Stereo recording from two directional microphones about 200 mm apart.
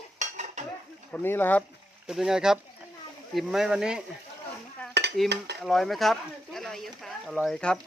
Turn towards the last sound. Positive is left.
turn(degrees=5)  # may be behind; listen again after turning